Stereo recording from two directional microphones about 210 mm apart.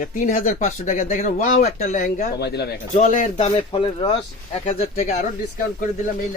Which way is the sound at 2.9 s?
35° left (ahead or behind).